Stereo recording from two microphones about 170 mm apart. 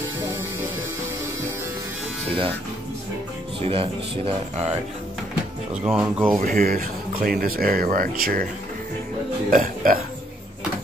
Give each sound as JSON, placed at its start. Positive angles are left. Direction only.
{"t": 3.6, "sound": "speech", "side_deg": -35}
{"t": 5.9, "sound": "speech", "side_deg": -10}
{"t": 6.4, "sound": "speech", "side_deg": -55}
{"t": 9.5, "sound": "speech", "side_deg": -55}